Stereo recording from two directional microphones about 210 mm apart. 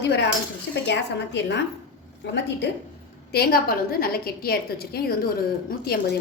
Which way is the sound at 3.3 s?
45° left (ahead or behind).